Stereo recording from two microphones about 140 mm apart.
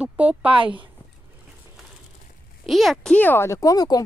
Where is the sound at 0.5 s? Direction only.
35° right (ahead or behind).